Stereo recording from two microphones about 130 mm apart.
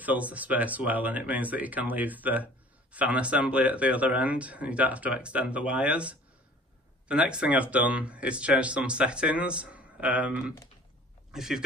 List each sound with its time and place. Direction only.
0.0 s speech: 10° right (ahead or behind)